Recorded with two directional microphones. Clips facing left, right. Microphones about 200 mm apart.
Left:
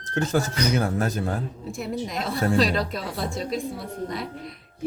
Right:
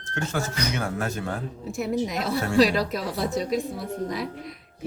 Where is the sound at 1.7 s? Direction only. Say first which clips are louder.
Right 4 dB; centre (ahead or behind).